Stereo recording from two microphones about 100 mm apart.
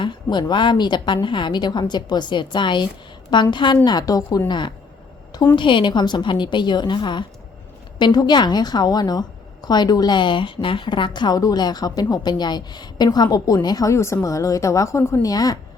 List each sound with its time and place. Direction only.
0.0 s a woman's voice: 50° left (ahead or behind)
3.8 s a woman's voice: 40° left (ahead or behind)
15.3 s a woman's voice: 40° left (ahead or behind)